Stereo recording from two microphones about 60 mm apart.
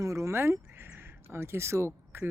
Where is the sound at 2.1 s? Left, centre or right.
Right.